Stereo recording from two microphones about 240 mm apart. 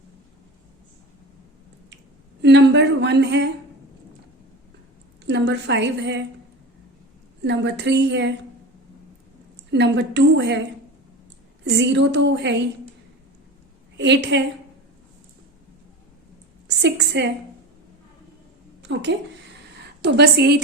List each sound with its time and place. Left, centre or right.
2.4 s a woman's voice: right
5.2 s a woman's voice: right
7.4 s a woman's voice: right
9.7 s a woman's voice: right
11.8 s a woman's voice: right
13.9 s a woman's voice: right
16.6 s a sound: right
18.8 s a sound: right
20.0 s a woman's voice: right